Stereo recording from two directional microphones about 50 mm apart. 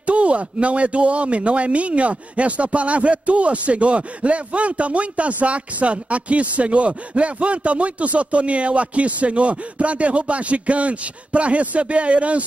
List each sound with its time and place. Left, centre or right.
0.0 s speech: right